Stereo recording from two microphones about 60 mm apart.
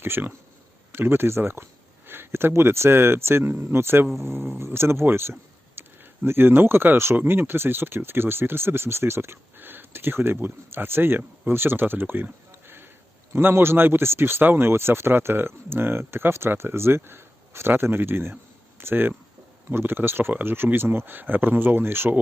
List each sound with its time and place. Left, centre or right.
0.0 s speech: right
12.6 s a sound: right
13.3 s speech: right